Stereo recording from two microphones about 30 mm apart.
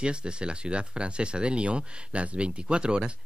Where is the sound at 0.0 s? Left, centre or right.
Right.